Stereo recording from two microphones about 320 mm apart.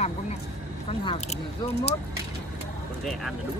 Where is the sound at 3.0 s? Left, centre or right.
Centre.